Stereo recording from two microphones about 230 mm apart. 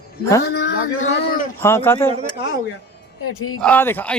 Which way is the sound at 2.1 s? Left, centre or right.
Right.